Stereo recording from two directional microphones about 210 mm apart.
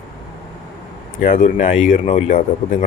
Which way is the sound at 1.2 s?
40° left (ahead or behind).